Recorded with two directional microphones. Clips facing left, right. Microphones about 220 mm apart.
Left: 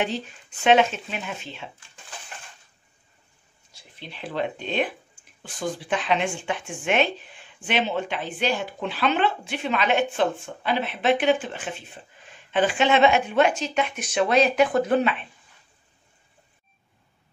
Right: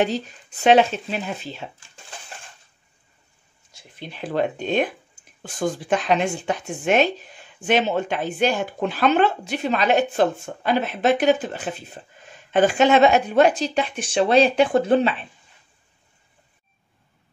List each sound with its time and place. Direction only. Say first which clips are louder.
0.0 s speech: right 5 dB; 40° right (ahead or behind)
4.0 s speech: right 5 dB; 45° right (ahead or behind); by 15.1 s 30° right (ahead or behind)